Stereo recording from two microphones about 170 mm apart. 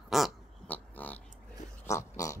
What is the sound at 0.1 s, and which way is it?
Pig, centre (ahead or behind).